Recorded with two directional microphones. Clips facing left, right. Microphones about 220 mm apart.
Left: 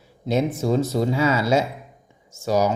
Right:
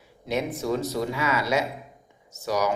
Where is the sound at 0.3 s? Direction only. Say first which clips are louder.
Left 5 dB; 25° left (ahead or behind).